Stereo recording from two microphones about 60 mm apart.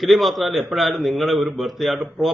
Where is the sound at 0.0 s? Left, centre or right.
Centre.